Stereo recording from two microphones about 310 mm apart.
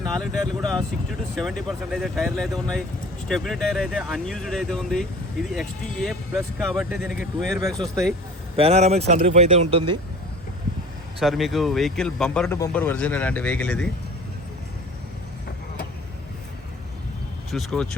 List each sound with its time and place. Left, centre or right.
0.0 s speech: centre
8.5 s speech: centre
11.2 s speech: centre
17.5 s speech: centre